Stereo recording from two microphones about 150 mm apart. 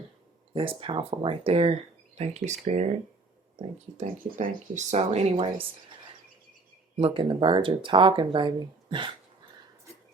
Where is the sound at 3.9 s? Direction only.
50° right (ahead or behind).